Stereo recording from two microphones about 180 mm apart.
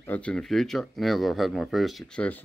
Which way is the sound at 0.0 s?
10° left (ahead or behind).